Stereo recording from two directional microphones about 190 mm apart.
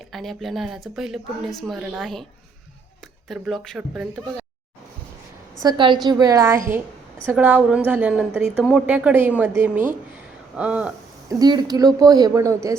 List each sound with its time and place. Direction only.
0.1 s speech: centre (ahead or behind)
3.2 s speech: centre (ahead or behind)
5.5 s a woman's voice: 25° right (ahead or behind); by 10.9 s 5° right (ahead or behind)
11.3 s speech: 20° right (ahead or behind)